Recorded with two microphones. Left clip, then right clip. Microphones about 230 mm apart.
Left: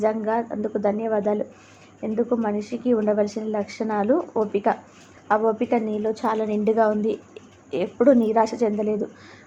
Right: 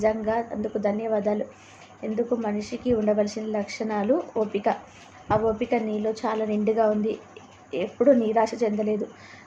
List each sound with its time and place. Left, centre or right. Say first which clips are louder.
0.0 s a woman's voice: left 1 dB; centre